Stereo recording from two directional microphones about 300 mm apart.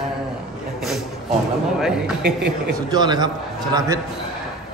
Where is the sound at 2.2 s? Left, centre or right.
Right.